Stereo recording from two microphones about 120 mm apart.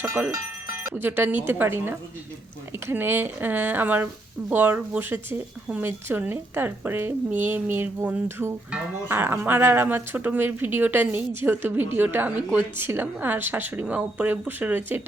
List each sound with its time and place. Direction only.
0.0 s speech: 20° right (ahead or behind)